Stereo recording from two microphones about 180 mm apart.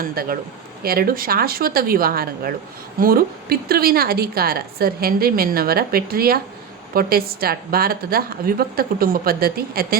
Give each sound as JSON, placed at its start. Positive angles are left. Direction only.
{"t": 0.0, "sound": "a woman's voice", "side_deg": -55}